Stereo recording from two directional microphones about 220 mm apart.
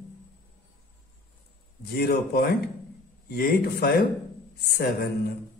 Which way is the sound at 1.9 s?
45° left (ahead or behind).